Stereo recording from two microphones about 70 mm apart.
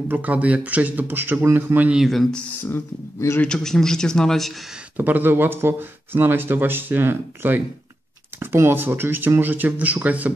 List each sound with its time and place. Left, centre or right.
0.1 s speech: right
2.6 s speech: left
3.5 s speech: centre
4.9 s speech: right